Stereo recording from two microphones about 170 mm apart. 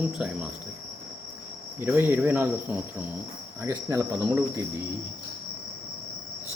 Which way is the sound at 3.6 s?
15° right (ahead or behind).